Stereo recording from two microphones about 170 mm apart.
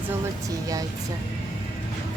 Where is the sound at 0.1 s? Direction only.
20° right (ahead or behind).